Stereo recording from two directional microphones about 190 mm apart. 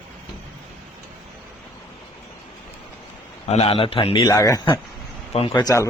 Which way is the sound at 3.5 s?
30° left (ahead or behind).